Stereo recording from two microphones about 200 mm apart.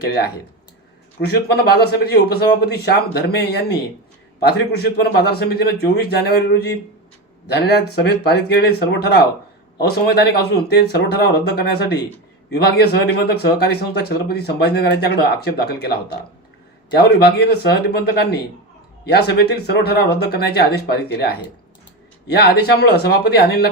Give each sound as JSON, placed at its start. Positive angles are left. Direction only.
{"t": 0.0, "sound": "speech", "side_deg": 55}
{"t": 1.3, "sound": "speech", "side_deg": 55}
{"t": 16.9, "sound": "speech", "side_deg": 55}